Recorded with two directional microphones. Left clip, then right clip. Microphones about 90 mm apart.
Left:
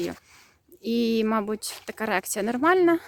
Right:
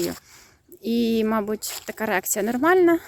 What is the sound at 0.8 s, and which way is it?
Speech, 35° left (ahead or behind).